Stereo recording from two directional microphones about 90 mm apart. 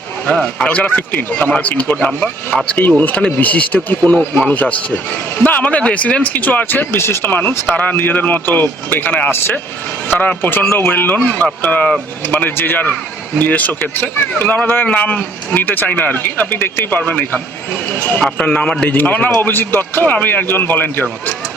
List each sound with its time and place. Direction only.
0.3 s a man's voice: 10° left (ahead or behind)